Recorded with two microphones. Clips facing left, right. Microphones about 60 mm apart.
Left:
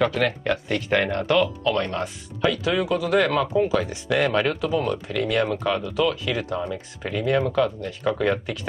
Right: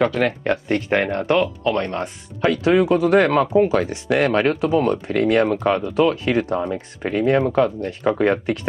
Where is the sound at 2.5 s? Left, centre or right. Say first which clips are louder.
Right 11 dB; right.